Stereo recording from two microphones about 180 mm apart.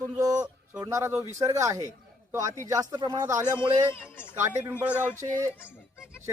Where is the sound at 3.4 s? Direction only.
15° left (ahead or behind).